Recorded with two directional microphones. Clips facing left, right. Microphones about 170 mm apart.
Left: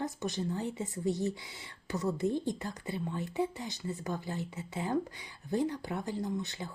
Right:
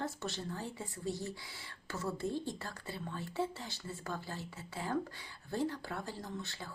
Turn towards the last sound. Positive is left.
turn(degrees=20)  # may be behind; listen again after turning